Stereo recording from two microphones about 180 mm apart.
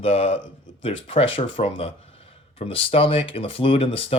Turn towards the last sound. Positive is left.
turn(degrees=30)  # may be behind; listen again after turning